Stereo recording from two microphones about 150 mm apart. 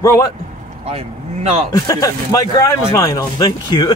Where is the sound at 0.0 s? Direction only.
20° left (ahead or behind).